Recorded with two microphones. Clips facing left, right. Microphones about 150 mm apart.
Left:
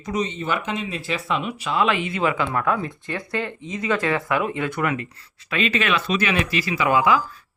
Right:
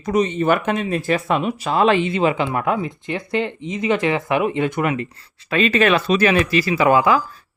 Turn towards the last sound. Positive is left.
turn(degrees=-40)  # may be behind; listen again after turning